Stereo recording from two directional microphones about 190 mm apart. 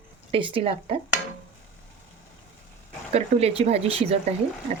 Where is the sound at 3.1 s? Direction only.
35° right (ahead or behind).